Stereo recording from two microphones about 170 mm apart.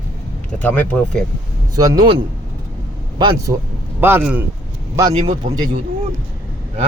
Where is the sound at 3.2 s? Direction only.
25° right (ahead or behind).